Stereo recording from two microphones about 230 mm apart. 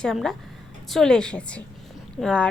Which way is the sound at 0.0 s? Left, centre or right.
Centre.